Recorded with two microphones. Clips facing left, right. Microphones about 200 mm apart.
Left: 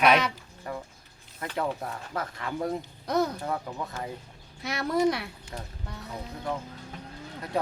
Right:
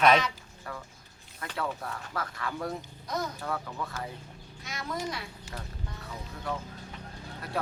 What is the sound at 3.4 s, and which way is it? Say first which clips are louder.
Speech: left 2 dB; 25° left (ahead or behind).